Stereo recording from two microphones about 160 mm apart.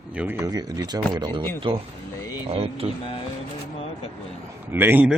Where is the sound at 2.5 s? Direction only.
35° right (ahead or behind).